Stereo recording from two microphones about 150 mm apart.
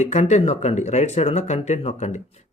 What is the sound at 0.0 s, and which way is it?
Speech, 50° left (ahead or behind).